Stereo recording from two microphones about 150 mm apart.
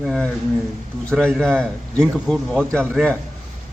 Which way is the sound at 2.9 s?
10° right (ahead or behind).